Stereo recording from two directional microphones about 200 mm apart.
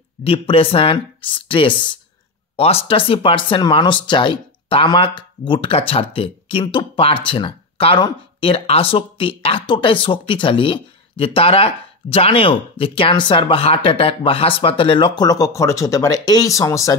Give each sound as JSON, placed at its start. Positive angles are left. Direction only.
{"t": 0.2, "sound": "speech", "side_deg": 30}